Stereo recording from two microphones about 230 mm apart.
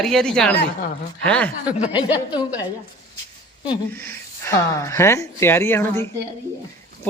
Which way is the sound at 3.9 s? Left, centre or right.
Centre.